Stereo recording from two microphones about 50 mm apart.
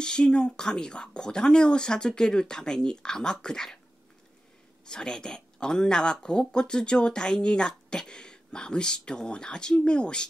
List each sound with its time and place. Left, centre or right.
0.0 s speech: centre
4.8 s speech: centre